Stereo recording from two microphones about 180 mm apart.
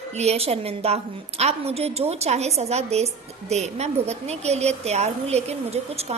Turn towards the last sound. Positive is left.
turn(degrees=-35)  # may be behind; listen again after turning